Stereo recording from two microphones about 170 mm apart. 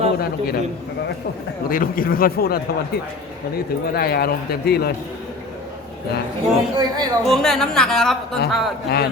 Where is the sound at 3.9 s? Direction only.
65° left (ahead or behind).